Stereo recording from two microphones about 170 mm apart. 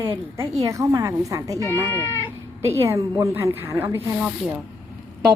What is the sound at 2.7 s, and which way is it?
A woman's voice, 15° right (ahead or behind).